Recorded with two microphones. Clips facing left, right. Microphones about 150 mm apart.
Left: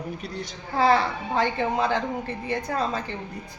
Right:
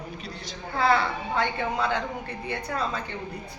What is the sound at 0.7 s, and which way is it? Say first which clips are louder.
A woman's voice: left 3 dB; 35° left (ahead or behind).